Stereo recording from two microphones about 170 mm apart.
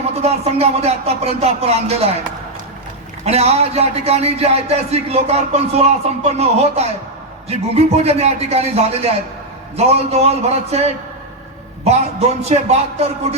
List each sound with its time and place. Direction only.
0.1 s a man's voice: 40° right (ahead or behind)
3.2 s a man's voice: 40° right (ahead or behind)
12.4 s a man's voice: 40° right (ahead or behind)